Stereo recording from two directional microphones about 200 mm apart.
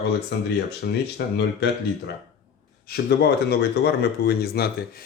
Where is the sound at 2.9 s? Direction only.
55° left (ahead or behind).